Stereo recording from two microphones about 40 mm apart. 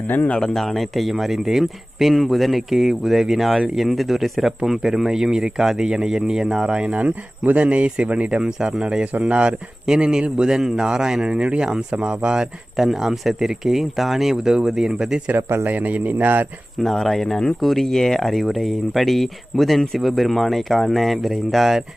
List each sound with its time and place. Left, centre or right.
0.5 s speech: centre
6.7 s speech: right
6.9 s speech: right
8.4 s speech: right
9.5 s speech: centre
11.3 s speech: right
12.7 s speech: centre
14.3 s speech: centre
15.4 s a man's voice: right
15.7 s speech: right
16.8 s speech: centre